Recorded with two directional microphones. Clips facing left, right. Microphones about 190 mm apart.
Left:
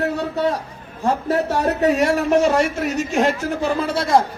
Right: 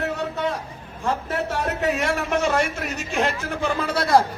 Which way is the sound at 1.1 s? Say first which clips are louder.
Left 6 dB; 40° left (ahead or behind).